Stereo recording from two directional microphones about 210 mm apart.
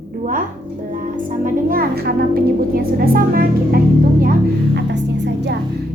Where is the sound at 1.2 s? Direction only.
40° right (ahead or behind).